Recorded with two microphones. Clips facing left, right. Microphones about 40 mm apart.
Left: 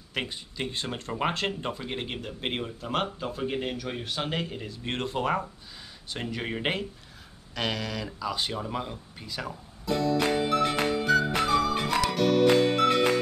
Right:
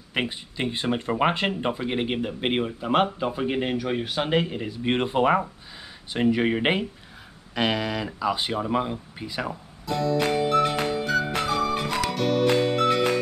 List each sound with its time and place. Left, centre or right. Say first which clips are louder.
0.1 s speech: right 5 dB; right
9.8 s music: right 2 dB; centre